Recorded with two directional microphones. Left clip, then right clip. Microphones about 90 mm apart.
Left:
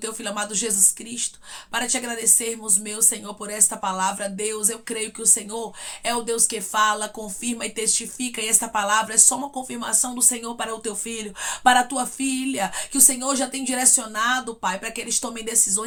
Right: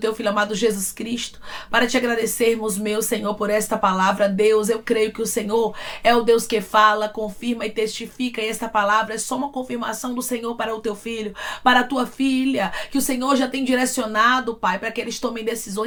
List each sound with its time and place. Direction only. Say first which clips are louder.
0.0 s speech: right 8 dB; 30° left (ahead or behind)